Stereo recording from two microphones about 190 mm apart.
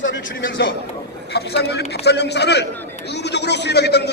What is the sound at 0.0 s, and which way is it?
Speech, 70° left (ahead or behind).